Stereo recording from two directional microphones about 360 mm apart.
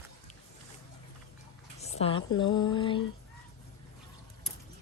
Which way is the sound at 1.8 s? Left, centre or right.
Centre.